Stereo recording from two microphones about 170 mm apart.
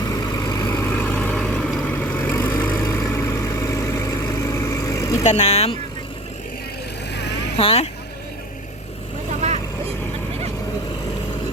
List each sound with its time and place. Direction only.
0.0 s vehicle: 20° left (ahead or behind)
5.2 s speech: 40° left (ahead or behind)
7.1 s vehicle: 80° left
7.5 s speech: 35° left (ahead or behind)